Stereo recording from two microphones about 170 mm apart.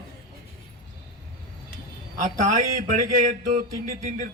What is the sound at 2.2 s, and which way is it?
A man's voice, 50° right (ahead or behind).